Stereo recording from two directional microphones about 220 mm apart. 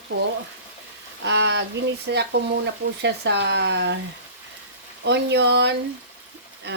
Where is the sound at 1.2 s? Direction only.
55° right (ahead or behind).